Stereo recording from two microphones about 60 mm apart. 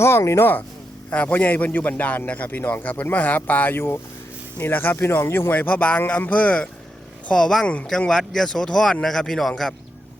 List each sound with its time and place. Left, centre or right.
0.0 s speech: left
0.3 s a man's voice: left
5.5 s a man's voice: left; by 9.7 s centre